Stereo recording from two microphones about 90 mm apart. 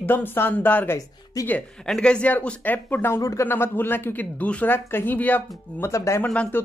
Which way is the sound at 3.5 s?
25° left (ahead or behind).